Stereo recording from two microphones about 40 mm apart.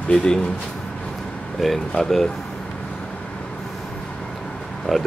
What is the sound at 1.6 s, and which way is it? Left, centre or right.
Speech, centre.